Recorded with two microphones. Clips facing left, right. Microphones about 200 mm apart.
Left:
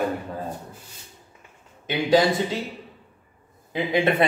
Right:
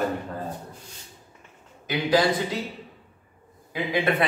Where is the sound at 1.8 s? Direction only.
25° left (ahead or behind).